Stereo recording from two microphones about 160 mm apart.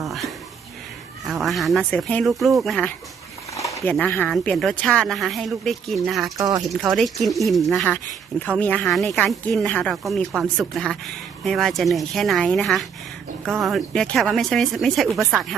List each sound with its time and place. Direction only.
0.0 s speech: centre (ahead or behind)
6.3 s speech: 20° right (ahead or behind)
6.7 s speech: centre (ahead or behind)